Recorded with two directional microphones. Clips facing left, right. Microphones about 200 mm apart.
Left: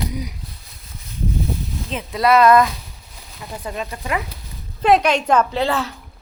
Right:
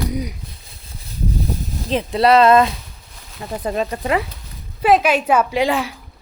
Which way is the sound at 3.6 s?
35° right (ahead or behind).